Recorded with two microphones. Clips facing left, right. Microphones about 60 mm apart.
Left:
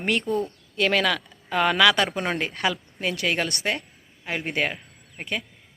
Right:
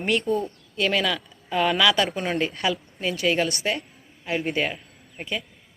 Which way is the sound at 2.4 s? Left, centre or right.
Left.